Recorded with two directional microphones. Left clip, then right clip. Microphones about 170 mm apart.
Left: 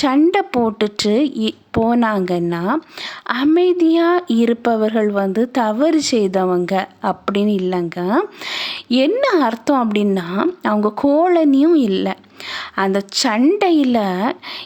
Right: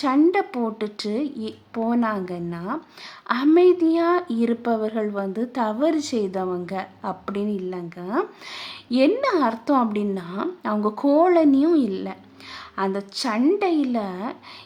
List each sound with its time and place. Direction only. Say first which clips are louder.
0.0 s speech: left 5 dB; 35° left (ahead or behind)